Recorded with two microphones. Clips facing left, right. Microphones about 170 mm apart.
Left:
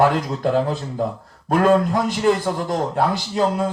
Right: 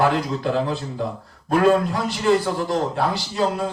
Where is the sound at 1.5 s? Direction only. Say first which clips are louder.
Left 1 dB; 45° left (ahead or behind).